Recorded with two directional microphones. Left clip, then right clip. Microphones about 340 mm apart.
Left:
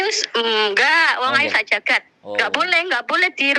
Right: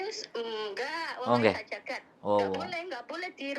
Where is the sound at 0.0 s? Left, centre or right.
Left.